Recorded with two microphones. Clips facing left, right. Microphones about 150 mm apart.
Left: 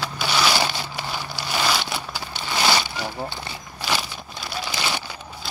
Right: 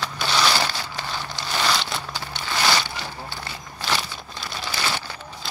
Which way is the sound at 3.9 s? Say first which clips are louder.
Even; 10° left (ahead or behind).